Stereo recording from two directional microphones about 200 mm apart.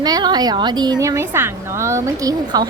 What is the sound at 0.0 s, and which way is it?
A woman's voice, 20° right (ahead or behind).